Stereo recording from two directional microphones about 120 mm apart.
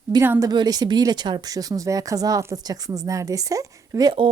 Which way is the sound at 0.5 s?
35° right (ahead or behind).